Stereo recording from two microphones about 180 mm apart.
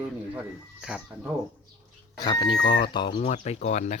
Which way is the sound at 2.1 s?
20° left (ahead or behind).